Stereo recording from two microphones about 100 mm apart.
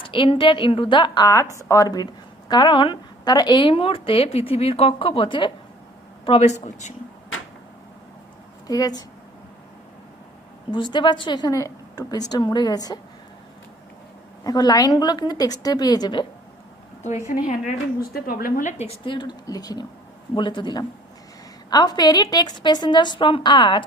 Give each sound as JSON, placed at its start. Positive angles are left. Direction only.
{"t": 0.0, "sound": "a woman's voice", "side_deg": 60}
{"t": 1.3, "sound": "a woman's voice", "side_deg": 30}
{"t": 3.7, "sound": "speech", "side_deg": 65}
{"t": 4.7, "sound": "speech", "side_deg": 70}
{"t": 6.2, "sound": "speech", "side_deg": 70}
{"t": 8.6, "sound": "speech", "side_deg": 40}
{"t": 10.7, "sound": "a woman's voice", "side_deg": 50}
{"t": 14.4, "sound": "a woman's voice", "side_deg": 40}
{"t": 19.0, "sound": "a woman's voice", "side_deg": 55}
{"t": 19.5, "sound": "a woman's voice", "side_deg": 40}
{"t": 20.3, "sound": "a woman's voice", "side_deg": 50}